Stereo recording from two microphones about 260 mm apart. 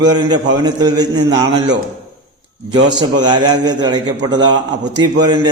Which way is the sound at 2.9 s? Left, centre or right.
Centre.